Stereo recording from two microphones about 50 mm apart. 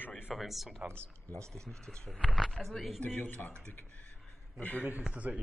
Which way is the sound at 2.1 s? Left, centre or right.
Centre.